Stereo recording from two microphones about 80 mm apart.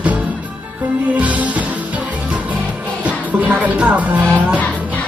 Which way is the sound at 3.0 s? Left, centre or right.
Centre.